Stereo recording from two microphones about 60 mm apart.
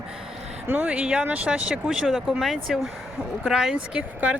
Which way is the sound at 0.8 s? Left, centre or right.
Centre.